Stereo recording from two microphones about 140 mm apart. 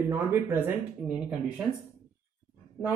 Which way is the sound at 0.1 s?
15° right (ahead or behind).